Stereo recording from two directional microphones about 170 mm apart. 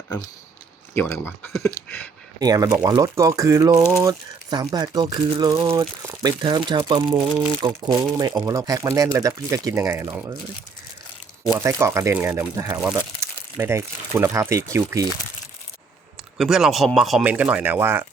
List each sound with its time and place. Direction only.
0.9 s speech: 15° left (ahead or behind)
2.4 s speech: 20° right (ahead or behind)
11.4 s speech: 20° right (ahead or behind)
16.4 s speech: 5° right (ahead or behind)